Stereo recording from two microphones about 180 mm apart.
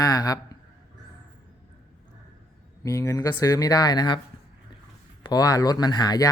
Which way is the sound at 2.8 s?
20° left (ahead or behind).